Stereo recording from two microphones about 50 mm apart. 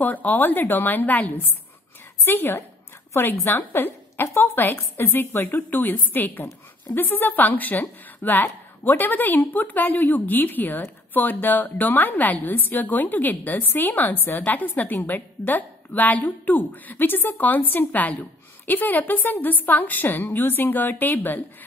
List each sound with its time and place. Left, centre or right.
0.0 s a woman's voice: left
2.2 s a woman's voice: left